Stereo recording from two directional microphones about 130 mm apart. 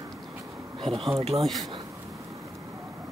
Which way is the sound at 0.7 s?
50° right (ahead or behind).